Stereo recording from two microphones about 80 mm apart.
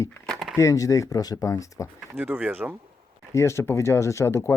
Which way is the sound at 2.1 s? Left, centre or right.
Centre.